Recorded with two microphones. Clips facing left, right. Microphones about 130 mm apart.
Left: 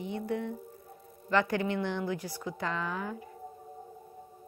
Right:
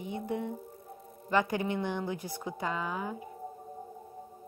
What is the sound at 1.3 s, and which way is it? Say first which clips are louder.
A woman's voice: left 1 dB; 15° right (ahead or behind).